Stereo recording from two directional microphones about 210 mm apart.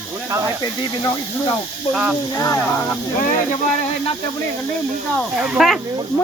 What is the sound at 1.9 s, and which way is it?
Speech, 5° right (ahead or behind).